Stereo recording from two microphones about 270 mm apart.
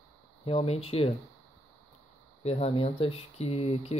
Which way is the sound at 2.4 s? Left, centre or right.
Left.